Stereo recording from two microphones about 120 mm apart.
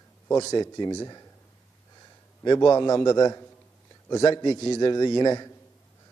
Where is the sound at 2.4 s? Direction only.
35° left (ahead or behind).